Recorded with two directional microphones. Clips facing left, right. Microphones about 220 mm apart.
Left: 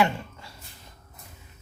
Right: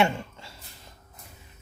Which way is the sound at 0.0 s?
25° right (ahead or behind).